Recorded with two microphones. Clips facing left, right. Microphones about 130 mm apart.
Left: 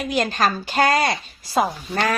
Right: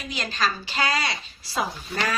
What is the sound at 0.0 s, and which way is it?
A woman's voice, 55° left (ahead or behind).